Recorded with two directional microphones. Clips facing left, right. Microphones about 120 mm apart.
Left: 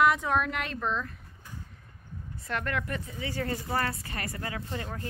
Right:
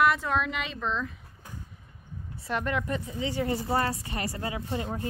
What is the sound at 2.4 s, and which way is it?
Speech, 20° right (ahead or behind).